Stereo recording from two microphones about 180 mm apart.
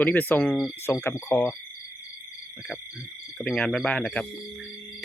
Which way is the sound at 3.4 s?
5° left (ahead or behind).